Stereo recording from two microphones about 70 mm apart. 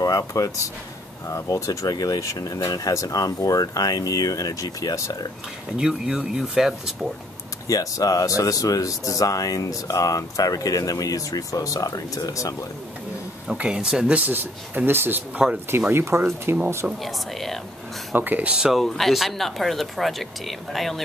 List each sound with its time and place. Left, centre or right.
0.0 s speech: left
5.8 s speech: centre
7.6 s speech: left
13.6 s speech: centre
14.1 s speech: right
17.0 s speech: centre
18.1 s speech: right
18.7 s speech: centre